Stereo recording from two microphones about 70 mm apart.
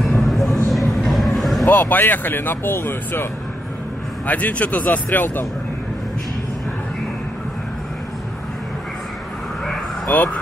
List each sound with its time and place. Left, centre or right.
0.1 s vehicle: centre
0.7 s train: centre
1.1 s music: centre
1.7 s speech: left
4.3 s speech: left
10.0 s speech: centre